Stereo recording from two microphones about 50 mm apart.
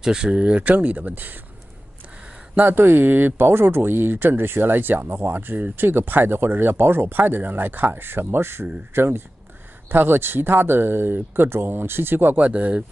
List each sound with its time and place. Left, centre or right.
0.0 s speech: centre; by 1.4 s right
2.7 s speech: right
12.4 s speech: right